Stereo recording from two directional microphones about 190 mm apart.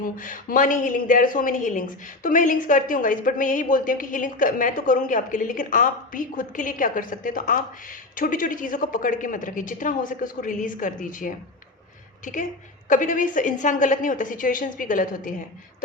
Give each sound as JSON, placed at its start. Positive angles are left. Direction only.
{"t": 0.0, "sound": "a woman's voice", "side_deg": 45}